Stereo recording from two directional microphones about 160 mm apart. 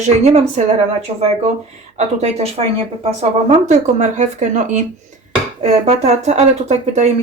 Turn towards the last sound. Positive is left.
turn(degrees=-45)  # may be behind; listen again after turning